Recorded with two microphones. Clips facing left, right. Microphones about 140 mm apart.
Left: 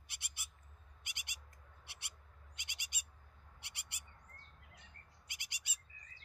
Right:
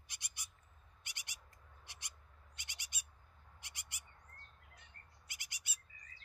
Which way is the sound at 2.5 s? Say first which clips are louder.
Left 1 dB; 15° left (ahead or behind).